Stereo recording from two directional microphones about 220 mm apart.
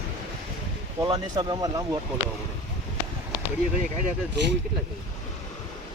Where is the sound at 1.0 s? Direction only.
20° right (ahead or behind).